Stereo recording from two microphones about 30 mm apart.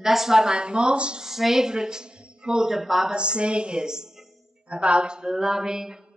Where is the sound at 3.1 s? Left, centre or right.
Right.